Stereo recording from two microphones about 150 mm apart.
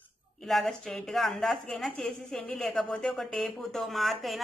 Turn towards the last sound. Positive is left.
turn(degrees=0)  # may be behind; listen again after turning